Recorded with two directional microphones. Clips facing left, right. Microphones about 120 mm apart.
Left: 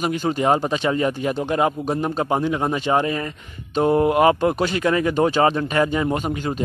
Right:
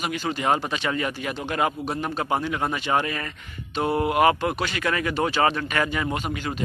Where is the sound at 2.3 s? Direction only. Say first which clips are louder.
Left 3 dB; 15° left (ahead or behind).